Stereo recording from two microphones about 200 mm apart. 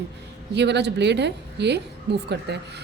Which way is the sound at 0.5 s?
60° right (ahead or behind).